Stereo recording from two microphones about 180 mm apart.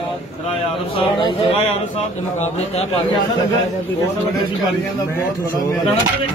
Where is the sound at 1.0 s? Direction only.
25° left (ahead or behind).